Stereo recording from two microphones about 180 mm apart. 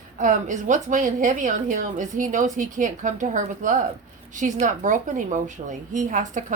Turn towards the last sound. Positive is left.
turn(degrees=-45)  # may be behind; listen again after turning